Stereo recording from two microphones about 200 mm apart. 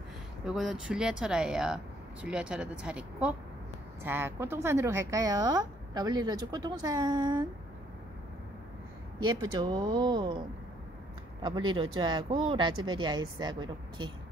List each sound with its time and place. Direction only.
0.5 s speech: 5° right (ahead or behind); by 7.4 s 20° right (ahead or behind)
9.2 s speech: 20° right (ahead or behind)
11.4 s speech: 25° right (ahead or behind)